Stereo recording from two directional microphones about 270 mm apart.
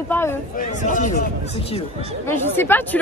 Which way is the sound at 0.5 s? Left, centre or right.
Left.